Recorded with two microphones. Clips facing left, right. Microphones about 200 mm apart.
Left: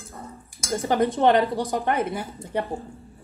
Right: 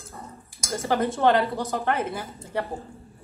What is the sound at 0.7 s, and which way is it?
Speech, 15° left (ahead or behind).